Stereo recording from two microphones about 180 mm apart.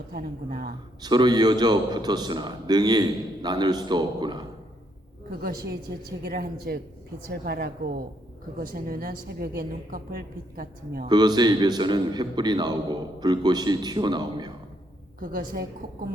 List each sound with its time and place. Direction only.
0.1 s a woman's voice: 60° right (ahead or behind)
1.0 s a man's voice: 25° right (ahead or behind)
6.1 s a woman's voice: 60° right (ahead or behind)
11.0 s a man's voice: 25° right (ahead or behind)
15.2 s a woman's voice: 50° right (ahead or behind)